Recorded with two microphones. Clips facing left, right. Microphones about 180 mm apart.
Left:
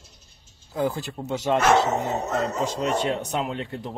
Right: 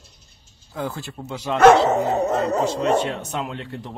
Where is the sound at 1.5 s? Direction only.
55° right (ahead or behind).